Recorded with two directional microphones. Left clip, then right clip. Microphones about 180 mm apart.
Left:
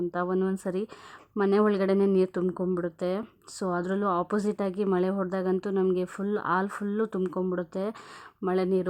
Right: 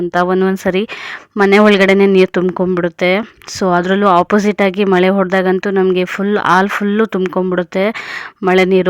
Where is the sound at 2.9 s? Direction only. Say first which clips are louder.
Right 17 dB; 20° right (ahead or behind).